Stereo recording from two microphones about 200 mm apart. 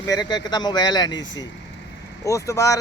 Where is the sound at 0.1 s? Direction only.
20° left (ahead or behind).